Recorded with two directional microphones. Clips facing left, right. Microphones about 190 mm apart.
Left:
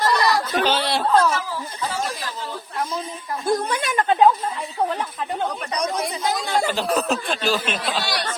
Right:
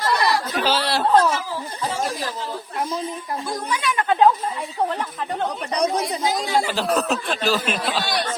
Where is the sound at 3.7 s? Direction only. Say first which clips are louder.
Left 1 dB; 45° left (ahead or behind).